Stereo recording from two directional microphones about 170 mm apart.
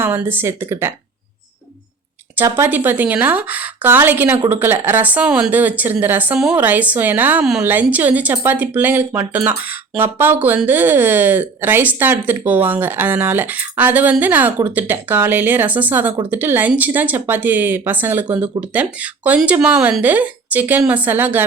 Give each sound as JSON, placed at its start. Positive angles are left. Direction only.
{"t": 0.0, "sound": "speech", "side_deg": -10}
{"t": 2.3, "sound": "speech", "side_deg": -10}